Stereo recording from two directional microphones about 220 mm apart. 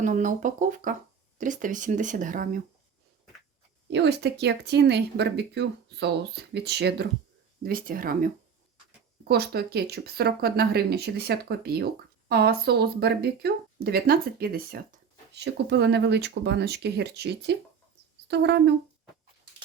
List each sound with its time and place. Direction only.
0.0 s speech: 35° right (ahead or behind)
3.8 s speech: 50° right (ahead or behind)